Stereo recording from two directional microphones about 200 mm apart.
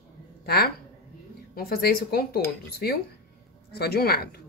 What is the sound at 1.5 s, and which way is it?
A woman's voice, 50° left (ahead or behind).